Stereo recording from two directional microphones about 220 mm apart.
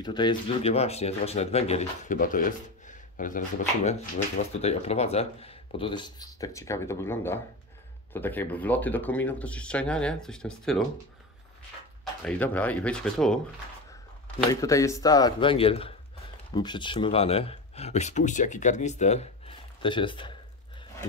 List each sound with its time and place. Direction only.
0.0 s speech: 20° left (ahead or behind); by 10.8 s centre (ahead or behind)
12.0 s speech: 5° left (ahead or behind)
14.5 s speech: 15° left (ahead or behind)